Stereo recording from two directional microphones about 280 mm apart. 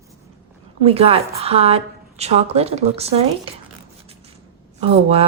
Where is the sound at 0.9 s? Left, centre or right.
Right.